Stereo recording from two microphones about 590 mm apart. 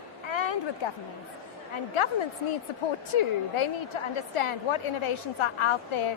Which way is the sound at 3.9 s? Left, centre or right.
Left.